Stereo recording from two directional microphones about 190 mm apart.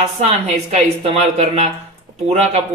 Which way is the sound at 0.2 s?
35° right (ahead or behind).